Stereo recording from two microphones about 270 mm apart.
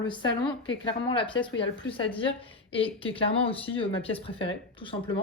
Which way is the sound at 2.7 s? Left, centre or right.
Centre.